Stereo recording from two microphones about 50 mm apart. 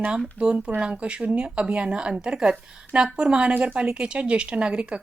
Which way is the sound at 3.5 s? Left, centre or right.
Right.